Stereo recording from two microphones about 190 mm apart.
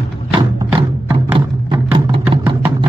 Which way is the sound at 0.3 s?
25° right (ahead or behind).